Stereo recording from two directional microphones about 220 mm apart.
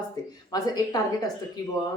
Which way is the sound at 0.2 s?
20° left (ahead or behind).